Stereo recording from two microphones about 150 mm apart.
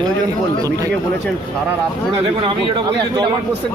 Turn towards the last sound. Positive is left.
turn(degrees=-30)  # may be behind; listen again after turning